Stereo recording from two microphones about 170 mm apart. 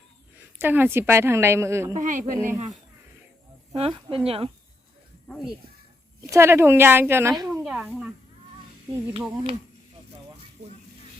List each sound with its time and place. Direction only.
0.6 s a woman's voice: 10° right (ahead or behind)
2.0 s speech: 50° right (ahead or behind)
2.3 s a woman's voice: 15° right (ahead or behind)
3.8 s speech: 35° right (ahead or behind)
5.3 s speech: centre (ahead or behind)
6.2 s a woman's voice: 15° right (ahead or behind)
7.5 s a sound: 5° right (ahead or behind)
10.6 s a sound: 40° right (ahead or behind)